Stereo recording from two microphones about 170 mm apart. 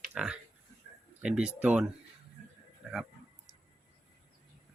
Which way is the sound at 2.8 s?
Centre (ahead or behind).